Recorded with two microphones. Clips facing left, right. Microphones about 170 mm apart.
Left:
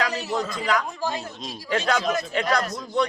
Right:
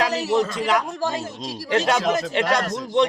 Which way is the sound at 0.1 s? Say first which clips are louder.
Right 6 dB; 90° right.